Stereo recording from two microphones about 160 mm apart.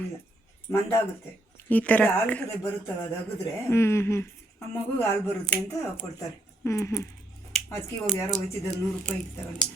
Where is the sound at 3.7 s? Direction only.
15° left (ahead or behind).